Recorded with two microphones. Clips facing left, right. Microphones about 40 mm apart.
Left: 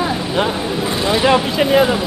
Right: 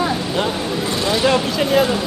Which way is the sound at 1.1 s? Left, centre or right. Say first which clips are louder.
Left 3 dB; left.